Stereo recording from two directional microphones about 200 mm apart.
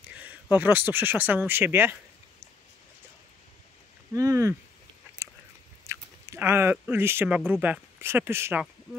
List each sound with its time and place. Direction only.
0.1 s speech: 10° right (ahead or behind)
4.1 s speech: 15° right (ahead or behind)
5.2 s a sound: 15° right (ahead or behind)
5.9 s speech: 10° right (ahead or behind)